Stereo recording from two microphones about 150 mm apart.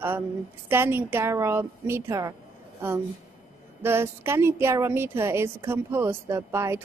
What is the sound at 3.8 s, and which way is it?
Speech, 15° right (ahead or behind).